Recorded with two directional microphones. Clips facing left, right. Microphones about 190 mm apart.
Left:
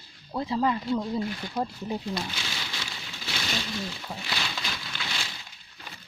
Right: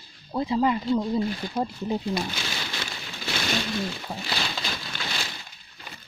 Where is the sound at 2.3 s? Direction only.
50° right (ahead or behind).